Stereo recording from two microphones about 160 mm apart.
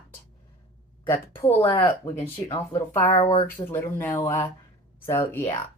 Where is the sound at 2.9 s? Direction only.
15° left (ahead or behind).